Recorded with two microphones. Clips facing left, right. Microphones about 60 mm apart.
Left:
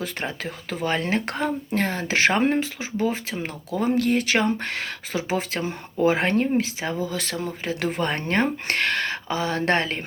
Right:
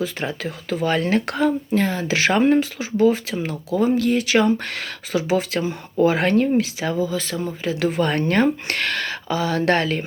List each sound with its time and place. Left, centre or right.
0.0 s speech: left
0.9 s speech: left
1.7 s speech: left
3.8 s speech: left
4.6 s speech: left
7.1 s speech: left
7.6 s speech: left